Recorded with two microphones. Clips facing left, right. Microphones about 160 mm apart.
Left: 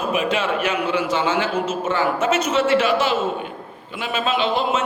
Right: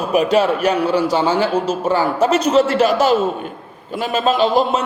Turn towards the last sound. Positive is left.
turn(degrees=-40)  # may be behind; listen again after turning